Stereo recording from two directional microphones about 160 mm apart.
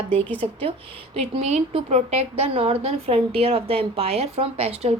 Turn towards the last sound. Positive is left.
turn(degrees=-40)  # may be behind; listen again after turning